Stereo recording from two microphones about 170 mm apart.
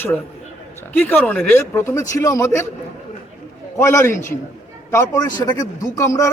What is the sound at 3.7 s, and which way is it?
A man's voice, 15° left (ahead or behind).